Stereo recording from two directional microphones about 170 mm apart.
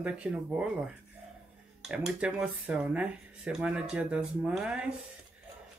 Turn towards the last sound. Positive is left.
turn(degrees=-5)  # may be behind; listen again after turning